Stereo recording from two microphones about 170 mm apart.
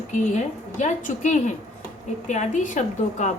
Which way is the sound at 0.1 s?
45° left (ahead or behind).